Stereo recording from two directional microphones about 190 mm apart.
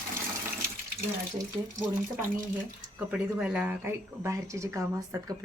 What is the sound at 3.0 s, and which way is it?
Speech, 5° right (ahead or behind).